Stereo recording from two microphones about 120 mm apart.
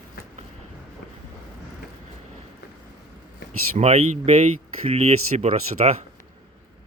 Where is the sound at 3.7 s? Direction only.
75° right (ahead or behind).